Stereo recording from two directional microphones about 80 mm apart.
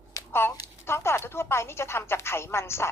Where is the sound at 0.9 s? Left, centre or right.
Left.